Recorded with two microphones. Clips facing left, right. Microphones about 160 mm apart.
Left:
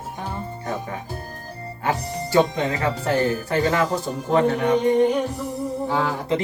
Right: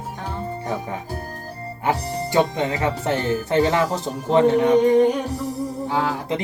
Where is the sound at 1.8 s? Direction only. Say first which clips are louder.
Right 2 dB; 20° right (ahead or behind).